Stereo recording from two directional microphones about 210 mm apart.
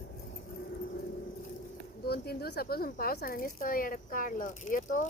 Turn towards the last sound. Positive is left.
turn(degrees=40)  # may be behind; listen again after turning